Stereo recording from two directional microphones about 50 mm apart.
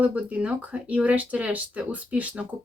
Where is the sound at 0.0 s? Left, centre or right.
Right.